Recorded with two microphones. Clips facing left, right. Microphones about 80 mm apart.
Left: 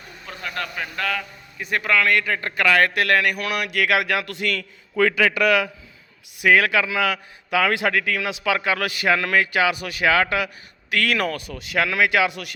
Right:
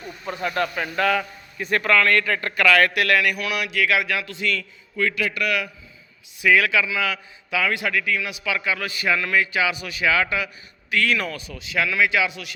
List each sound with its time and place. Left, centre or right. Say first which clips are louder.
0.3 s a man's voice: right 6 dB; centre
1.5 s speech: right 2 dB; centre
2.6 s speech: even; left
5.2 s a man's voice: left 6 dB; left
6.7 s a man's voice: left 2 dB; left